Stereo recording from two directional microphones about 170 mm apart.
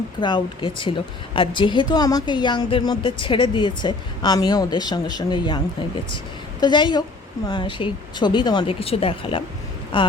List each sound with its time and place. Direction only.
0.2 s a woman's voice: 25° left (ahead or behind)
6.6 s a woman's voice: 25° left (ahead or behind)